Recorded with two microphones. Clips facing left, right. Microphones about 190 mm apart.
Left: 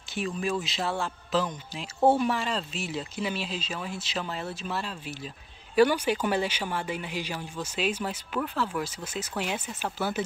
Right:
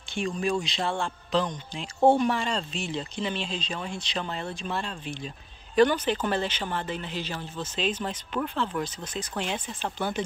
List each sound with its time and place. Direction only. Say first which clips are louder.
0.1 s speech: right 2 dB; 5° left (ahead or behind)